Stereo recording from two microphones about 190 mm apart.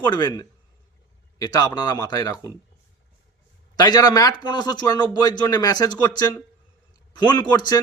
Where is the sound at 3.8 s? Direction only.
20° left (ahead or behind).